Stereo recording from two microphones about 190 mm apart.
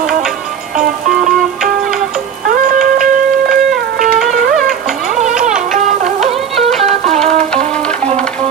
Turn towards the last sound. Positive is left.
turn(degrees=-35)  # may be behind; listen again after turning